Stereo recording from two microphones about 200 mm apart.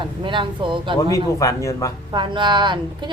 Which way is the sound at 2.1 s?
20° right (ahead or behind).